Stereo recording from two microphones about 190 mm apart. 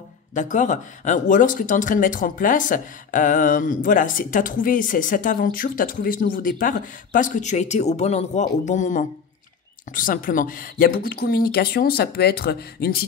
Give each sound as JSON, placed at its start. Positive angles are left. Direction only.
{"t": 0.3, "sound": "speech", "side_deg": 40}